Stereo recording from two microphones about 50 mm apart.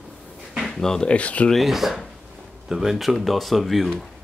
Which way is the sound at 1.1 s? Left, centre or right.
Left.